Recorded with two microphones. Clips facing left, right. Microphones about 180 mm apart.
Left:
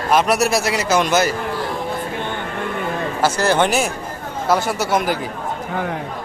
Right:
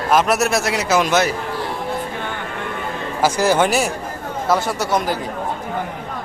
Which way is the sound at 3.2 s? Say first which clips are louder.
Right 1 dB; 10° right (ahead or behind).